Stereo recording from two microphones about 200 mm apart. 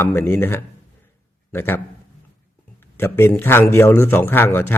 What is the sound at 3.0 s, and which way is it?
Speech, 10° left (ahead or behind).